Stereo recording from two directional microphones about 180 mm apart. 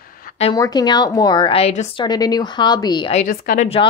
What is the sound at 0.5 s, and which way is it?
Speech, 20° left (ahead or behind).